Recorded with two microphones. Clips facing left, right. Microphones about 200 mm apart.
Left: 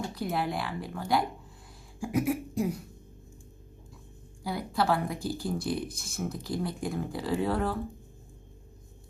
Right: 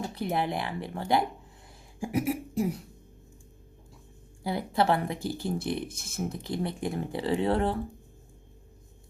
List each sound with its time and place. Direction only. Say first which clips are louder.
0.1 s speech: right 2 dB; 25° right (ahead or behind)
4.8 s speech: right 2 dB; 25° right (ahead or behind)